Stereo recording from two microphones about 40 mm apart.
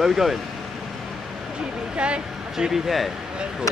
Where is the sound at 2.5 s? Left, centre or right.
Centre.